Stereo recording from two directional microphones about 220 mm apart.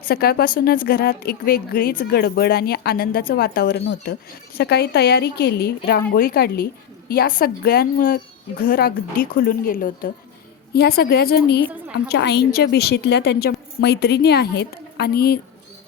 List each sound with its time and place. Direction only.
0.0 s a woman's voice: 45° left (ahead or behind)